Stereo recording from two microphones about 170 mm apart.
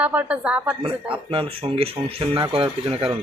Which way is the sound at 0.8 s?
30° right (ahead or behind).